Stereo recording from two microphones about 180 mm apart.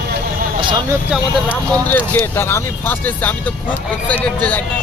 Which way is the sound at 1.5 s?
10° left (ahead or behind).